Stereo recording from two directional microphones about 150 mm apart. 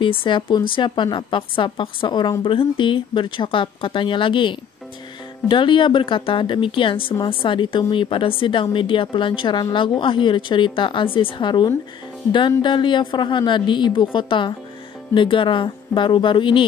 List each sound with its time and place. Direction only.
0.0 s a woman's voice: 35° left (ahead or behind)